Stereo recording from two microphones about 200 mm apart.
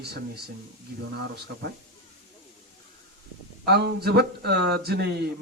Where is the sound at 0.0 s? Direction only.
55° right (ahead or behind).